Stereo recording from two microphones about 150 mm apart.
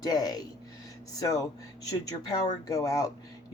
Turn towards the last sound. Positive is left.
turn(degrees=25)  # may be behind; listen again after turning